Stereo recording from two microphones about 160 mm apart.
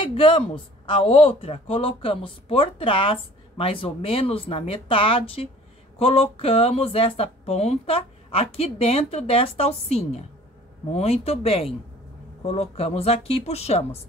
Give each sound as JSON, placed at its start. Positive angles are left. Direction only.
{"t": 0.0, "sound": "a man's voice", "side_deg": 35}